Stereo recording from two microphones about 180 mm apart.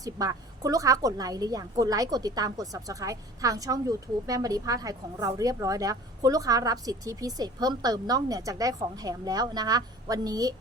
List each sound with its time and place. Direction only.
0.0 s a woman's voice: 20° right (ahead or behind)